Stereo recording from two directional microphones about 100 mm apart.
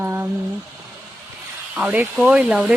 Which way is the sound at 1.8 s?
10° right (ahead or behind).